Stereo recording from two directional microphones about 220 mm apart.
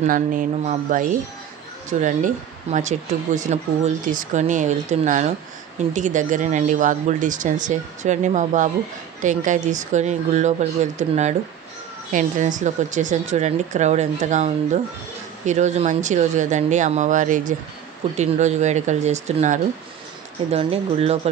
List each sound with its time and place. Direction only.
0.0 s speech: 35° right (ahead or behind)